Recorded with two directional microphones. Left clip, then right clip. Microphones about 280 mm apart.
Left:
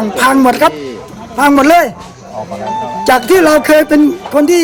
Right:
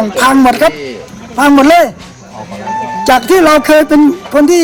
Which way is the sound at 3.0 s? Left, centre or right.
Centre.